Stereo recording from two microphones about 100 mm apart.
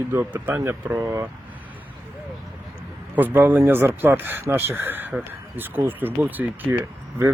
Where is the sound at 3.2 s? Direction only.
20° right (ahead or behind).